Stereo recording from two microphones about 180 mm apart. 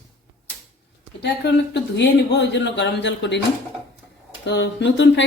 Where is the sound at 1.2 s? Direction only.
70° left (ahead or behind).